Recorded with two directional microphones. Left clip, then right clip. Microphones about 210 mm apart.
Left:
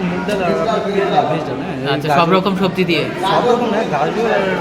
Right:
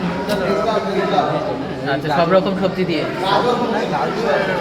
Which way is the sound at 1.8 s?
30° left (ahead or behind).